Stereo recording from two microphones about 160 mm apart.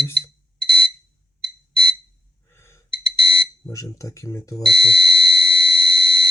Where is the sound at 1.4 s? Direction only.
30° left (ahead or behind).